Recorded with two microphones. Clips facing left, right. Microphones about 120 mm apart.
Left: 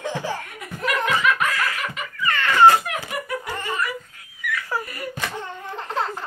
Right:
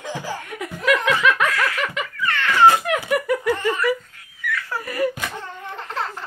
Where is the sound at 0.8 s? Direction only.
90° right.